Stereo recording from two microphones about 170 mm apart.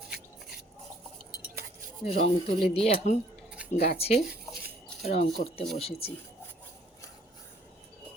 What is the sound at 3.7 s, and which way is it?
Speech, 65° left (ahead or behind).